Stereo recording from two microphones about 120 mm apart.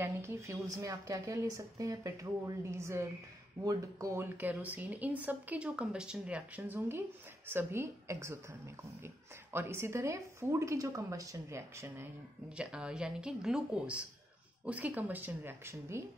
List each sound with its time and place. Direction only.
0.0 s a woman's voice: 20° right (ahead or behind)
12.4 s speech: 10° right (ahead or behind)